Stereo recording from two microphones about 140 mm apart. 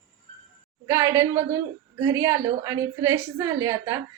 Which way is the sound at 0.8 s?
20° right (ahead or behind).